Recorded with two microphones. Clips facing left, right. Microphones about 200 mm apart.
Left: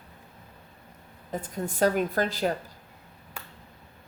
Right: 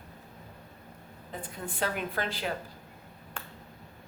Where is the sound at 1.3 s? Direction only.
45° left (ahead or behind).